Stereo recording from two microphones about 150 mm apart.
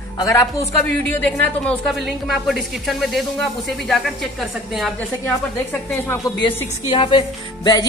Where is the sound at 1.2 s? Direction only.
10° left (ahead or behind).